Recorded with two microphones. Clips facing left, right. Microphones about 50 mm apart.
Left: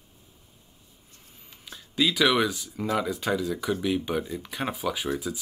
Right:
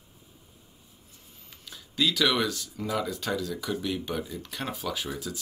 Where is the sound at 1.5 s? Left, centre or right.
Centre.